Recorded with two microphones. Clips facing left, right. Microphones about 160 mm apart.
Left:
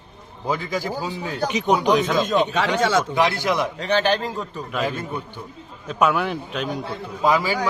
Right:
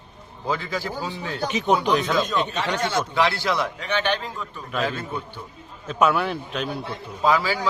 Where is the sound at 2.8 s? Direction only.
90° left.